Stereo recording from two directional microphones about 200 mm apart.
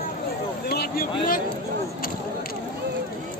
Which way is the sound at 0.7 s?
50° left (ahead or behind).